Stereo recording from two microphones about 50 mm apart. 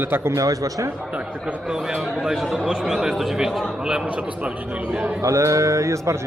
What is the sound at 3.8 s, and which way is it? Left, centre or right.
A man's voice, centre.